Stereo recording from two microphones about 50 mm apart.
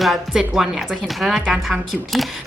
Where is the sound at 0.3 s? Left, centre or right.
Centre.